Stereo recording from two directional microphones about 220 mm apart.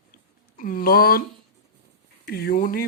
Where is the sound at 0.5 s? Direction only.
40° left (ahead or behind).